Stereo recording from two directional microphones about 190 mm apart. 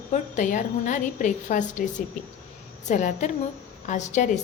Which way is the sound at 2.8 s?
40° left (ahead or behind).